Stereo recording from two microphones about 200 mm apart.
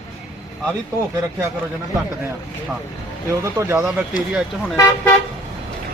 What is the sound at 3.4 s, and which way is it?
Speech, 15° right (ahead or behind).